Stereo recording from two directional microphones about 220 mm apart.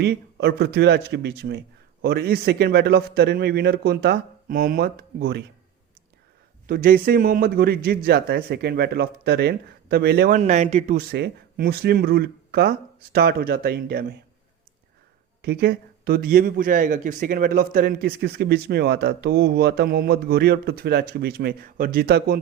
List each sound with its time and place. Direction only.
0.0 s a man's voice: 50° right (ahead or behind)
6.7 s a man's voice: 40° right (ahead or behind)
11.1 s a man's voice: 45° right (ahead or behind)
15.4 s a man's voice: 45° right (ahead or behind)